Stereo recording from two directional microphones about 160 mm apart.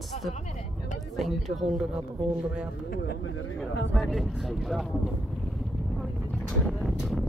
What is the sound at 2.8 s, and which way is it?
Speech, 80° left.